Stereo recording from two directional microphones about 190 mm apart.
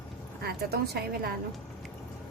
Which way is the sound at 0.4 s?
55° right (ahead or behind).